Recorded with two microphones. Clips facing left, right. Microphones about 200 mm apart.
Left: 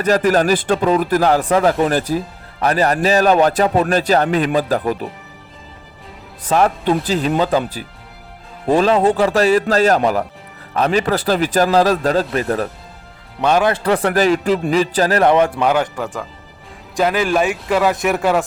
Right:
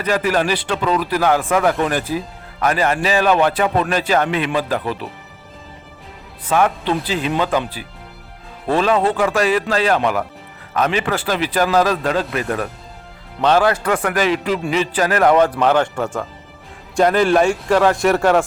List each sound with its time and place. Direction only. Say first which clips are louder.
0.0 s speech: left 4 dB; 45° left (ahead or behind)
6.4 s speech: left 2 dB; 40° left (ahead or behind)
8.8 s speech: left 2 dB; 30° left (ahead or behind)
13.4 s speech: even; 15° left (ahead or behind)
13.8 s speech: left 3 dB; 35° left (ahead or behind)
15.5 s speech: right 1 dB; 10° left (ahead or behind)